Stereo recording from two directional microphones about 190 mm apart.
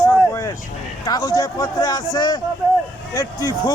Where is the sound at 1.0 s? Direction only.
20° left (ahead or behind).